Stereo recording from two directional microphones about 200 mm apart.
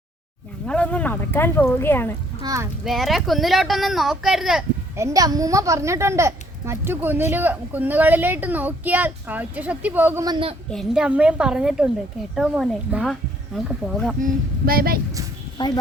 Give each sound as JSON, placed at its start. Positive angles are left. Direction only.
{"t": 0.7, "sound": "speech", "side_deg": 5}
{"t": 2.4, "sound": "a child's voice", "side_deg": -15}
{"t": 2.8, "sound": "speech", "side_deg": 0}
{"t": 4.9, "sound": "a woman's voice", "side_deg": -15}
{"t": 10.2, "sound": "a man's voice", "side_deg": -25}
{"t": 10.7, "sound": "speech", "side_deg": 0}
{"t": 14.7, "sound": "speech", "side_deg": -50}
{"t": 15.5, "sound": "speech", "side_deg": 20}